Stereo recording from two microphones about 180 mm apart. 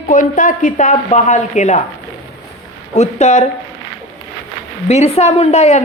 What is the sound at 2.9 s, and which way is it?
Speech, 40° left (ahead or behind).